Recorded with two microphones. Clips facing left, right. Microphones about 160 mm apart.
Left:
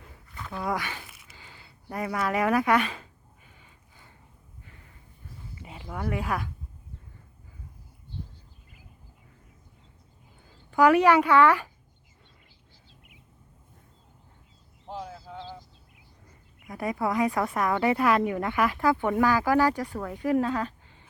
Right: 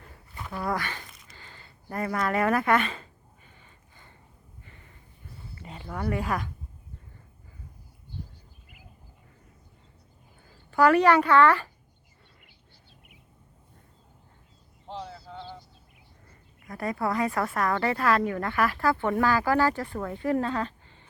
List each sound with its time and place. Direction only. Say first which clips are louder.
0.5 s a sound: even; centre (ahead or behind)
4.6 s snort: even; centre (ahead or behind)
5.5 s speech: right 1 dB; 5° left (ahead or behind)
10.7 s speech: left 1 dB; 10° left (ahead or behind)
14.8 s a sound: left 1 dB; 10° left (ahead or behind)
16.6 s speech: left 1 dB; 15° left (ahead or behind)